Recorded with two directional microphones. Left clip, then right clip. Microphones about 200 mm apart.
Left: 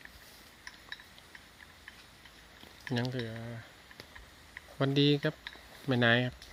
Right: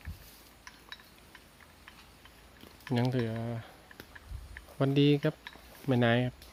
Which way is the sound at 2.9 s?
25° right (ahead or behind).